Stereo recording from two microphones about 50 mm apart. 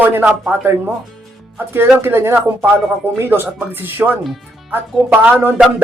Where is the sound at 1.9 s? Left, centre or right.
Right.